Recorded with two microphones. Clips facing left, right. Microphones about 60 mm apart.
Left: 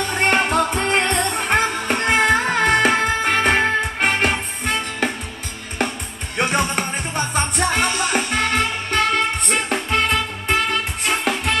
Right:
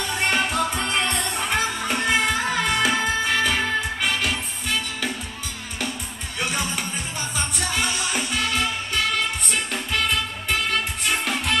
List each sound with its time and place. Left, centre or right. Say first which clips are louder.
0.1 s music: left 5 dB; left
6.3 s music: left 7 dB; left